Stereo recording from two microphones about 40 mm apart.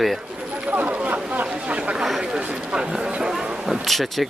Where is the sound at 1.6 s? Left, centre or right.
Right.